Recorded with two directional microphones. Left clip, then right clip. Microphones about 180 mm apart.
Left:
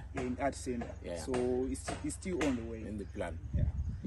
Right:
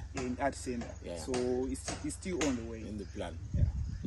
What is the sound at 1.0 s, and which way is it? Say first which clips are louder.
Speech: left 1 dB; centre (ahead or behind).